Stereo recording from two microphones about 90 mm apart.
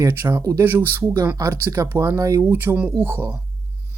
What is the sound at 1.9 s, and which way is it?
Speech, 25° right (ahead or behind).